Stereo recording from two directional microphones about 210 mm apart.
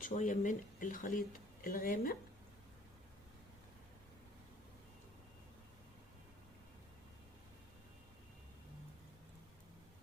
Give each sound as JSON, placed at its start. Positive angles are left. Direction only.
{"t": 0.0, "sound": "speech", "side_deg": 35}